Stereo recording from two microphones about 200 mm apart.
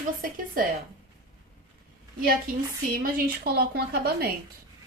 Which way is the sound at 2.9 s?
45° right (ahead or behind).